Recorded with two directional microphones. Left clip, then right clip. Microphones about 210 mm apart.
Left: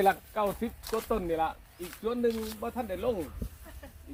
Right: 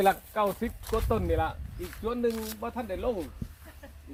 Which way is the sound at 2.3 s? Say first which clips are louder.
Even; 20° right (ahead or behind).